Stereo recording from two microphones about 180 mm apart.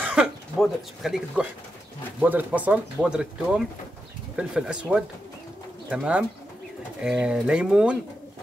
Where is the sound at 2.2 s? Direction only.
10° right (ahead or behind).